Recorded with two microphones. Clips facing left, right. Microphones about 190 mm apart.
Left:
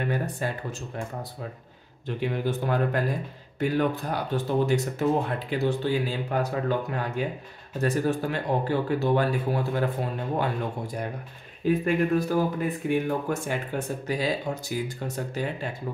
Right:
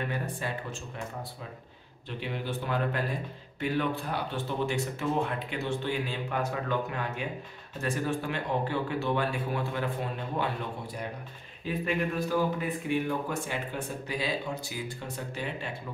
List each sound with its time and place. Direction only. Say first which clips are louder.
0.1 s speech: left 5 dB; 40° left (ahead or behind)
2.0 s speech: left 7 dB; 45° left (ahead or behind)
11.6 s speech: left 7 dB; 45° left (ahead or behind)